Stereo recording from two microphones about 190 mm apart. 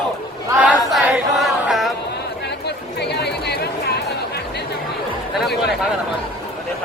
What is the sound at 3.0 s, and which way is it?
Chatter, 60° left (ahead or behind).